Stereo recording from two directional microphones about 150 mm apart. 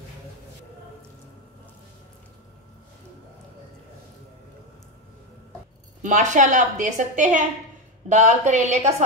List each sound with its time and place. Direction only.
6.0 s a woman's voice: 55° right (ahead or behind)